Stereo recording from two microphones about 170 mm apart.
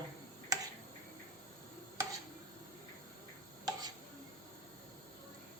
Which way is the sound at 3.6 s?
25° right (ahead or behind).